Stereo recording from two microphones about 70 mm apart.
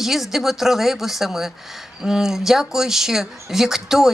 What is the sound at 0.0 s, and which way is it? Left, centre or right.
A woman's voice, centre.